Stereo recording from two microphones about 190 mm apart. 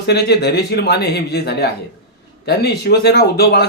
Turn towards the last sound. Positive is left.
turn(degrees=60)  # may be behind; listen again after turning